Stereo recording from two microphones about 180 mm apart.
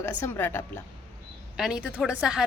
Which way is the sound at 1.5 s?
5° right (ahead or behind).